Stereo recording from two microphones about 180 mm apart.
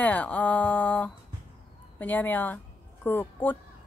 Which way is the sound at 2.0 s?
10° left (ahead or behind).